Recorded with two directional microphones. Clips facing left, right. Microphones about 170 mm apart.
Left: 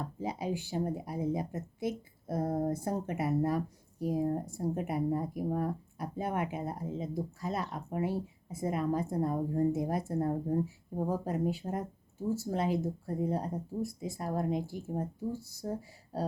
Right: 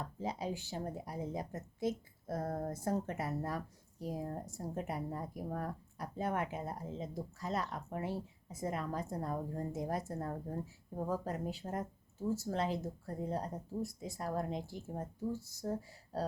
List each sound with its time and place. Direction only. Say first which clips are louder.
0.0 s speech: left 3 dB; 10° left (ahead or behind)
10.2 s speech: left 10 dB; 20° left (ahead or behind)